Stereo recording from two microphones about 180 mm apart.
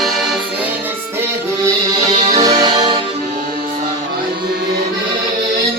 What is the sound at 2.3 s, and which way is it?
Music, 20° right (ahead or behind).